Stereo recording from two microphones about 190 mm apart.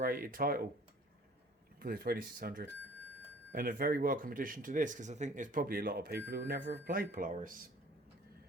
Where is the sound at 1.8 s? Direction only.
50° right (ahead or behind).